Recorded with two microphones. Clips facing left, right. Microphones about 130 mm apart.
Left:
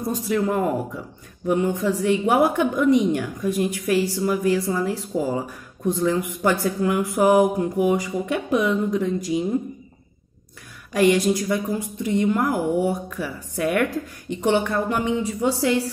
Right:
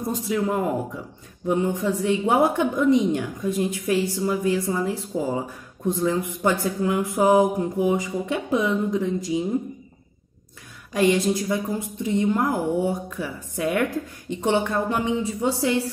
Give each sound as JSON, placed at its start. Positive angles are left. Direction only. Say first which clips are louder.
{"t": 0.0, "sound": "speech", "louder": "left 2 dB", "side_deg": -20}
{"t": 10.9, "sound": "a woman's voice", "louder": "left 2 dB", "side_deg": -25}